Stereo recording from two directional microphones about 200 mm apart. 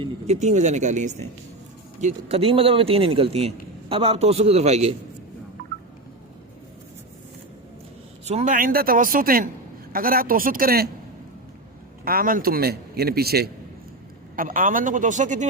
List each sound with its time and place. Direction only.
0.0 s a man's voice: 35° right (ahead or behind)
8.2 s a man's voice: 35° right (ahead or behind)
12.0 s a man's voice: 45° right (ahead or behind)